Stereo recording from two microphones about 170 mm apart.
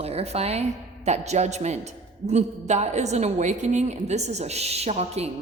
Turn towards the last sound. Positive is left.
turn(degrees=-40)  # may be behind; listen again after turning